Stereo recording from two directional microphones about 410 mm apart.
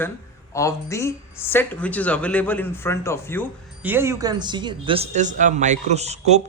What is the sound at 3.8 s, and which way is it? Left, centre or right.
Speech, centre.